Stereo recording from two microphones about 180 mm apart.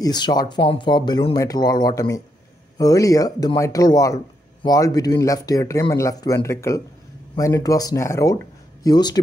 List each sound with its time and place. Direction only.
0.0 s speech: 25° left (ahead or behind)